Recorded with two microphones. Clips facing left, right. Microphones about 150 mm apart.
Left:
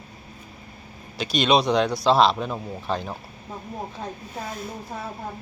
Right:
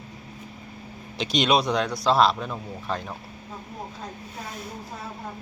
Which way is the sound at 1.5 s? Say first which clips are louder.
Left 4 dB; centre (ahead or behind).